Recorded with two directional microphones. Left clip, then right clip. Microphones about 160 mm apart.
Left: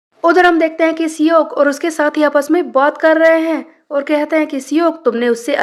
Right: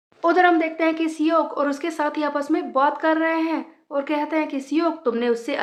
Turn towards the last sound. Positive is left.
turn(degrees=40)  # may be behind; listen again after turning